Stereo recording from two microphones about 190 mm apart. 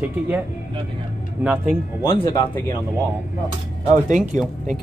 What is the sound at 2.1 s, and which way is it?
Speech, 20° left (ahead or behind).